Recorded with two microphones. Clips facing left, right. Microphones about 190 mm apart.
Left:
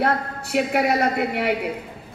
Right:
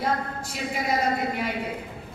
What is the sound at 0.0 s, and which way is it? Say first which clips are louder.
A woman's voice: left 4 dB; 65° left (ahead or behind).